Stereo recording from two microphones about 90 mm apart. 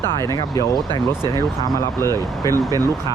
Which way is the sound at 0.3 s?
45° left (ahead or behind).